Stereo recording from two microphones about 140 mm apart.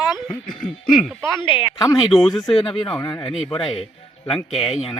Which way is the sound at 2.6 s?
40° left (ahead or behind).